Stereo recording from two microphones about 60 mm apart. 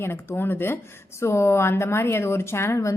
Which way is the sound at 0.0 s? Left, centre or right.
Left.